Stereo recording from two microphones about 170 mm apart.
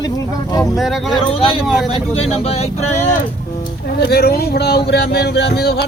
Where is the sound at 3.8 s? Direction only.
65° left (ahead or behind).